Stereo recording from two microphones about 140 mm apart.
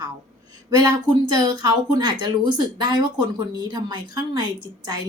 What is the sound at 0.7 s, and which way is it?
Speech, 30° right (ahead or behind).